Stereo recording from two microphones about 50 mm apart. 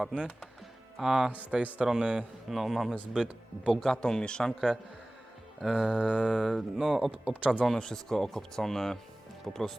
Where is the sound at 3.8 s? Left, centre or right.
Centre.